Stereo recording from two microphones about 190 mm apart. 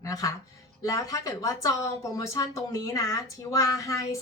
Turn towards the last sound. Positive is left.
turn(degrees=15)  # may be behind; listen again after turning